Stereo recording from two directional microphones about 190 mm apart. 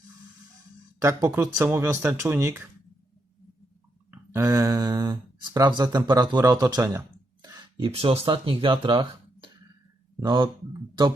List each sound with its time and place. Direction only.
1.0 s speech: 15° right (ahead or behind)
4.1 s speech: 15° right (ahead or behind)
7.4 s a sound: 20° right (ahead or behind)
7.9 s speech: 30° right (ahead or behind)